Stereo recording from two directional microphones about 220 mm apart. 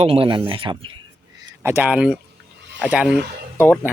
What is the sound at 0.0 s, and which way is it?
Speech, 25° right (ahead or behind).